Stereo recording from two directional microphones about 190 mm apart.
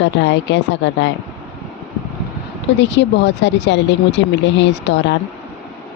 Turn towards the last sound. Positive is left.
turn(degrees=65)  # may be behind; listen again after turning